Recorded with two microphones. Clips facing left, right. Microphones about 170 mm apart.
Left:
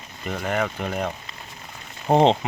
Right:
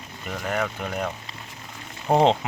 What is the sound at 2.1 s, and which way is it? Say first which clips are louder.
Speech: left 2 dB; 15° left (ahead or behind).